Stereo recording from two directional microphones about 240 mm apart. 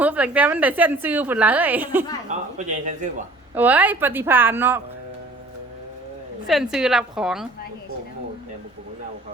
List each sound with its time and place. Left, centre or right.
0.0 s a woman's voice: centre
2.6 s speech: right
3.5 s a woman's voice: centre
6.5 s a woman's voice: centre